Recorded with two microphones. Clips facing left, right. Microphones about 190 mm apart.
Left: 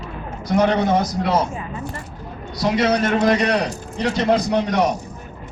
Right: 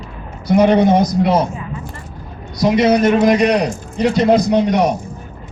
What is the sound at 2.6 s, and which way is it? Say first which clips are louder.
A man's voice: right 6 dB; 15° right (ahead or behind).